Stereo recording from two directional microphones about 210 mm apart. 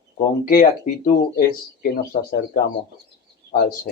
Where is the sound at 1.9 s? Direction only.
45° left (ahead or behind).